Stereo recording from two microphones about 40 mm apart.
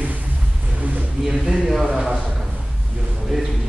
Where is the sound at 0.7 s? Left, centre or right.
Right.